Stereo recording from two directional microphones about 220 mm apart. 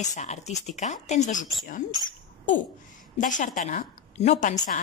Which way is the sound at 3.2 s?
35° left (ahead or behind).